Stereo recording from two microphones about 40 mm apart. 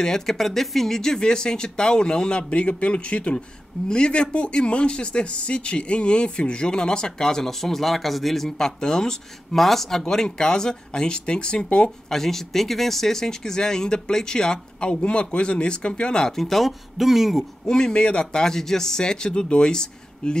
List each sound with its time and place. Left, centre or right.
0.0 s speech: centre
9.6 s speech: centre; by 11.9 s left
12.1 s speech: centre
16.3 s speech: centre
17.6 s speech: centre